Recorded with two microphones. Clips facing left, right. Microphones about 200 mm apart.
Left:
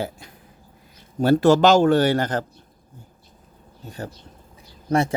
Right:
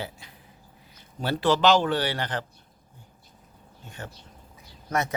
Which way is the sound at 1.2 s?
45° left (ahead or behind).